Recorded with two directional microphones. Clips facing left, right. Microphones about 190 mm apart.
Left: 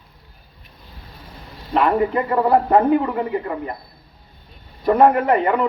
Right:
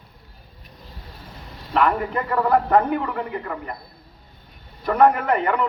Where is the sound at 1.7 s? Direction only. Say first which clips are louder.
Left 4 dB; 30° left (ahead or behind).